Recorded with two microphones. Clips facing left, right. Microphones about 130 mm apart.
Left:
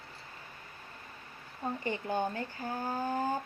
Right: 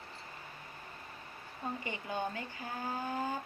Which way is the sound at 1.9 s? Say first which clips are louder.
Left 7 dB; 35° left (ahead or behind).